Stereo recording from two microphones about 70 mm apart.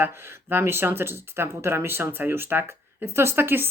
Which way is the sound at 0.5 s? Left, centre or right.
Right.